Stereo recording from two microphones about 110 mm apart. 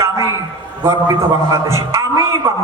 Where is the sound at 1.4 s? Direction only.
25° right (ahead or behind).